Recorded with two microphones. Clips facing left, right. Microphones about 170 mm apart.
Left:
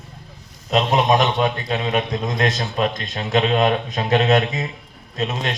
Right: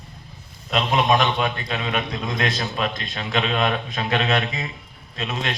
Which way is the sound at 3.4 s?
25° left (ahead or behind).